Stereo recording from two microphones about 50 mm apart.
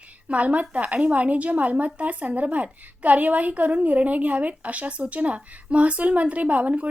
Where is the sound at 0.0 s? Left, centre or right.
Right.